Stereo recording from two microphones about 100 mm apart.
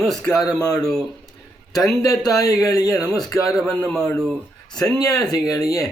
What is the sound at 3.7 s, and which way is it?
Speech, 10° left (ahead or behind).